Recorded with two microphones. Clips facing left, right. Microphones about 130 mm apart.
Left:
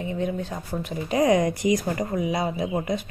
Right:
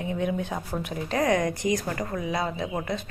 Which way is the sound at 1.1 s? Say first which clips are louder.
Left 4 dB; 15° left (ahead or behind).